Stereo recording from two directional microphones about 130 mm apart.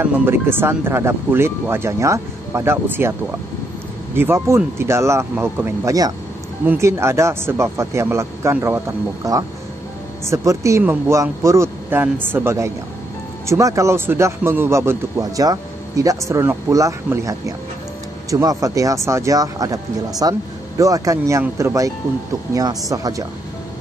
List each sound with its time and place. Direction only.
0.0 s a man's voice: 15° right (ahead or behind)
6.6 s a man's voice: 20° right (ahead or behind)